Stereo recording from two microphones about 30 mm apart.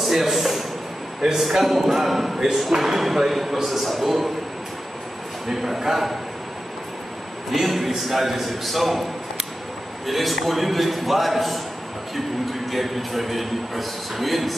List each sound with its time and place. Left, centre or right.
0.0 s a man's voice: centre
5.5 s a man's voice: centre
7.5 s a man's voice: centre
10.0 s a man's voice: centre